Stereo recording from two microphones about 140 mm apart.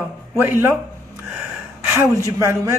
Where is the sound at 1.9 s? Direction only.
20° right (ahead or behind).